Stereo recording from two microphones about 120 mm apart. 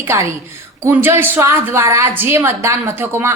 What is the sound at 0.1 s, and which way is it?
A woman's voice, 20° right (ahead or behind).